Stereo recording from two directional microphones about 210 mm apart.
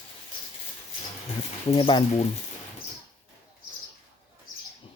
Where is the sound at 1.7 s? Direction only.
25° left (ahead or behind).